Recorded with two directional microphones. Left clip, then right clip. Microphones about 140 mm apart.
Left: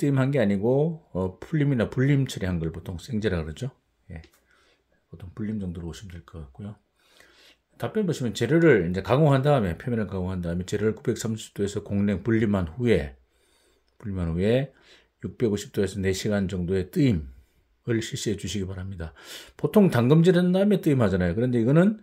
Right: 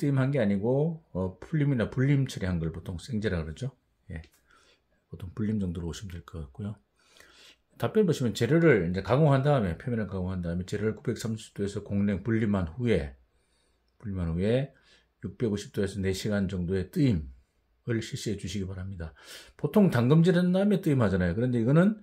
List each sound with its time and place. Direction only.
0.0 s speech: 30° left (ahead or behind)
4.6 s a sound: 25° right (ahead or behind)
8.3 s speech: centre (ahead or behind)
8.5 s speech: 20° left (ahead or behind)